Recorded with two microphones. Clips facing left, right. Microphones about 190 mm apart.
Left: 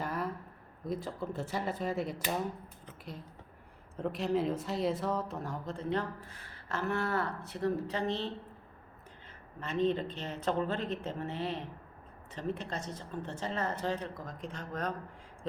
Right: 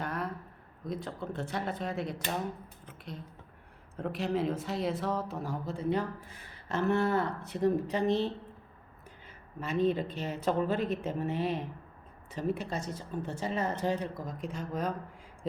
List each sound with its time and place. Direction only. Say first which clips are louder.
0.0 s a sound: even; centre (ahead or behind)
0.9 s speech: left 1 dB; centre (ahead or behind)
3.9 s speech: even; centre (ahead or behind)
6.7 s speech: right 5 dB; 20° right (ahead or behind)
9.6 s speech: right 2 dB; 10° right (ahead or behind)